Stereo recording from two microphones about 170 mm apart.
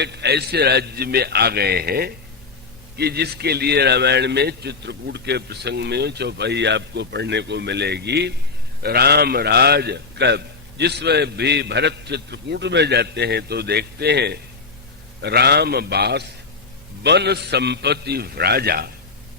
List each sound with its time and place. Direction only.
0.0 s a man's voice: 80° right
8.8 s a man's voice: 65° right (ahead or behind)